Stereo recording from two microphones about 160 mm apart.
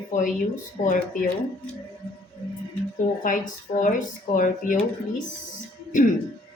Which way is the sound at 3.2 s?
55° left (ahead or behind).